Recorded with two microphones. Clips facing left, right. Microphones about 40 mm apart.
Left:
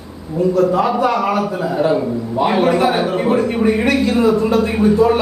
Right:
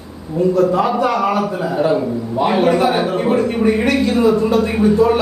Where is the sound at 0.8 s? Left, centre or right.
Centre.